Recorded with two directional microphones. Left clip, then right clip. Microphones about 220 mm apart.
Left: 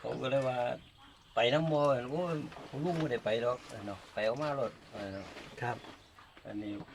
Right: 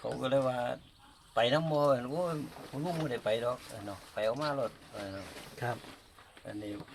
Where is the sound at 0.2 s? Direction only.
15° right (ahead or behind).